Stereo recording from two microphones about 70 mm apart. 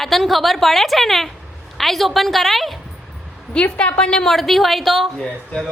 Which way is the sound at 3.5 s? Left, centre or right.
Centre.